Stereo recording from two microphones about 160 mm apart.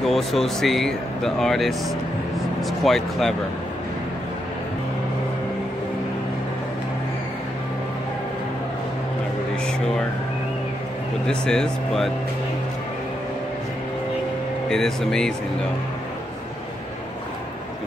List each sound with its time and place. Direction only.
0.0 s speech: centre (ahead or behind)
11.2 s speech: 5° left (ahead or behind)
14.7 s speech: 5° left (ahead or behind)